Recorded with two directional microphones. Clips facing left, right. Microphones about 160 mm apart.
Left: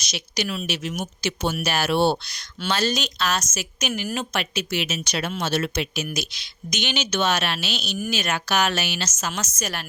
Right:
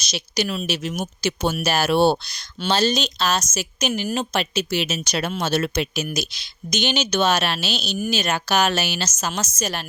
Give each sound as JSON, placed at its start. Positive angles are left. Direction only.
{"t": 0.0, "sound": "speech", "side_deg": -30}